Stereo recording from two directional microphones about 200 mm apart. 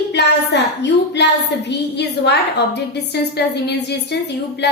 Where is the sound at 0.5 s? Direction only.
60° left (ahead or behind).